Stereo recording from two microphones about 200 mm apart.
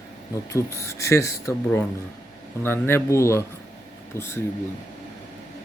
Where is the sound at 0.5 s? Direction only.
15° left (ahead or behind).